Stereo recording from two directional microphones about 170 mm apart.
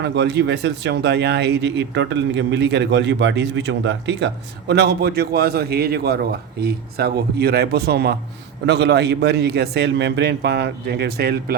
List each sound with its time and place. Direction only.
0.0 s speech: 90° right
4.7 s a man's voice: 80° right